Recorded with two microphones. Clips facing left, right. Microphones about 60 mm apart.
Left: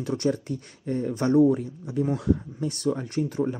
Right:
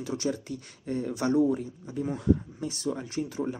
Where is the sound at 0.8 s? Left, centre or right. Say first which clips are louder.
Left 3 dB; left.